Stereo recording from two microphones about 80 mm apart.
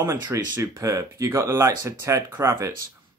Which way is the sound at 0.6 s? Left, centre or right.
Right.